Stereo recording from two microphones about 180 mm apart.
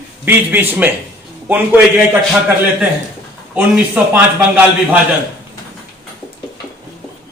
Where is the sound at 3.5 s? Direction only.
10° right (ahead or behind).